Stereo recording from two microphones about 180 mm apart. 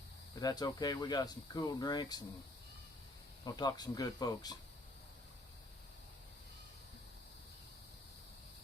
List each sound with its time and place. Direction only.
0.3 s speech: 20° left (ahead or behind)
3.4 s speech: 20° left (ahead or behind)